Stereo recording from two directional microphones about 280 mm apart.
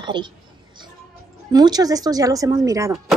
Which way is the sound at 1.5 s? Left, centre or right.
Centre.